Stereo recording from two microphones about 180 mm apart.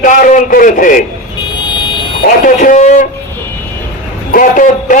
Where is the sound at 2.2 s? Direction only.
50° left (ahead or behind).